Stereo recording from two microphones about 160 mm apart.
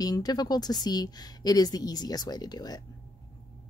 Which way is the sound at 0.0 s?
25° left (ahead or behind).